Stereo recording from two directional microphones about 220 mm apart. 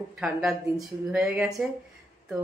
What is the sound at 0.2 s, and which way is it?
Speech, 5° right (ahead or behind).